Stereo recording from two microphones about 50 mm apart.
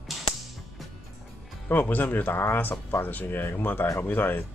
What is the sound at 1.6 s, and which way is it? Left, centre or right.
Speech, left.